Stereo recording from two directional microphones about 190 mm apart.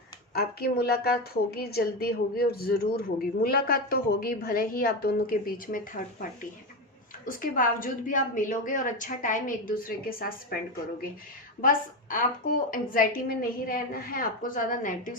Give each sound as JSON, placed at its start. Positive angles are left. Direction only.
{"t": 0.3, "sound": "a woman's voice", "side_deg": 55}
{"t": 7.3, "sound": "a woman's voice", "side_deg": 45}
{"t": 11.6, "sound": "a woman's voice", "side_deg": 45}